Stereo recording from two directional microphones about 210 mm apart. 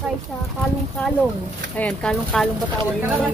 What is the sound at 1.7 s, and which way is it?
Speech, 5° left (ahead or behind).